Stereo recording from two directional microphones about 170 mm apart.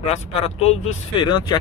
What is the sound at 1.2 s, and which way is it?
Speech, 25° left (ahead or behind).